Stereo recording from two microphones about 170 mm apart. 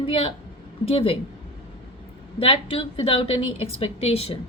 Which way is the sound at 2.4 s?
35° left (ahead or behind).